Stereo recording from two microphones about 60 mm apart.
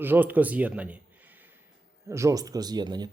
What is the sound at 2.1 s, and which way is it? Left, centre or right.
Speech, right.